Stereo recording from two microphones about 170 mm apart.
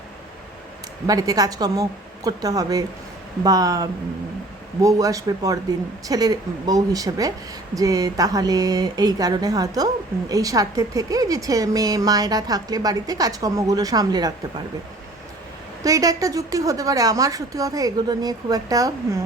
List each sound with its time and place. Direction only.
1.0 s speech: 20° right (ahead or behind)
15.8 s speech: 20° right (ahead or behind)